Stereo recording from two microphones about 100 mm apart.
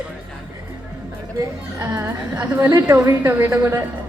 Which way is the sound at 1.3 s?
30° right (ahead or behind).